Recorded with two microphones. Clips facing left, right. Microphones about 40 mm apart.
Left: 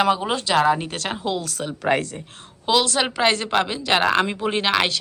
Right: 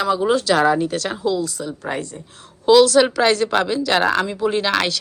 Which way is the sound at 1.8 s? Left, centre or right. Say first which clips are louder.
Left 6 dB; left.